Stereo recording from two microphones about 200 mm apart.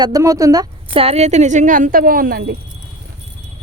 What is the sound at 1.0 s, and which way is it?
A woman's voice, 30° right (ahead or behind).